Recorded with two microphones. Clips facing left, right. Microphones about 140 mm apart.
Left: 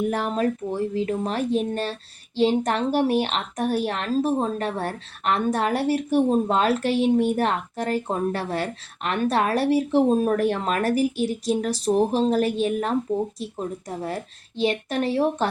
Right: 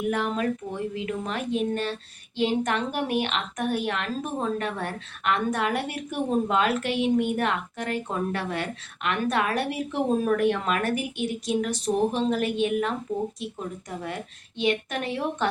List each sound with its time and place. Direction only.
0.1 s a woman's voice: 35° left (ahead or behind)